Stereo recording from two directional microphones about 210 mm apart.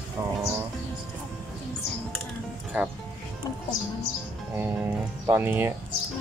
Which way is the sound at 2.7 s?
10° right (ahead or behind).